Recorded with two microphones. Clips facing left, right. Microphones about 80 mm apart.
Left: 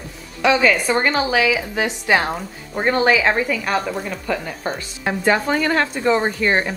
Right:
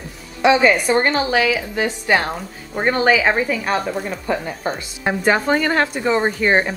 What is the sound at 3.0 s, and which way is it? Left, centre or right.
Speech, centre.